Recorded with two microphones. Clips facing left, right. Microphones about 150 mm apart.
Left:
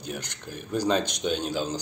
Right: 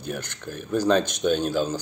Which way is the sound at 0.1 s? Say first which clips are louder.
Right 4 dB; 15° left (ahead or behind).